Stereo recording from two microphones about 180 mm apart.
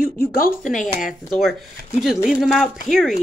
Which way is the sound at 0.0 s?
50° left (ahead or behind).